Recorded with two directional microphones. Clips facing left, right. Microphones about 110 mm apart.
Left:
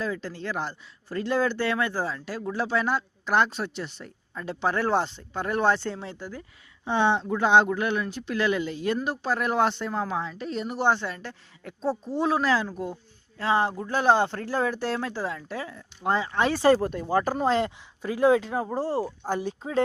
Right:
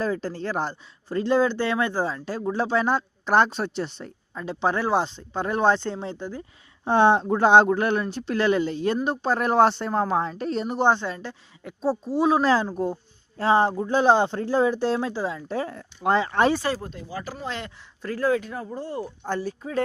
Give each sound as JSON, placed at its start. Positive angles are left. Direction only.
{"t": 0.0, "sound": "speech", "side_deg": -40}
{"t": 6.8, "sound": "speech", "side_deg": -45}
{"t": 10.8, "sound": "a woman's voice", "side_deg": -20}
{"t": 12.4, "sound": "speech", "side_deg": -30}
{"t": 15.7, "sound": "speech", "side_deg": -75}
{"t": 16.7, "sound": "speech", "side_deg": 65}
{"t": 18.0, "sound": "speech", "side_deg": 10}
{"t": 18.3, "sound": "speech", "side_deg": 25}
{"t": 19.2, "sound": "speech", "side_deg": 10}
{"t": 19.5, "sound": "speech", "side_deg": 25}